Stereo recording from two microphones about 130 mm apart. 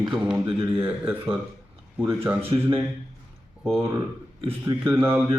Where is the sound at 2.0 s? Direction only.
15° right (ahead or behind).